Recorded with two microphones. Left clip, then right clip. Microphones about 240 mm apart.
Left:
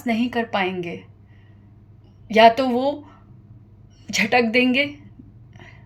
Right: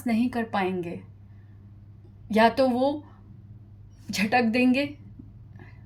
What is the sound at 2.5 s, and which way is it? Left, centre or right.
Speech, right.